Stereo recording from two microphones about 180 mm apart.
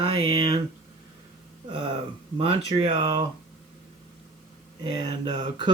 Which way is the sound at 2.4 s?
30° right (ahead or behind).